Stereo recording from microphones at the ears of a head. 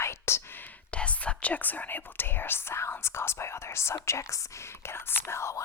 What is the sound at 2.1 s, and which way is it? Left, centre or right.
Speech, left.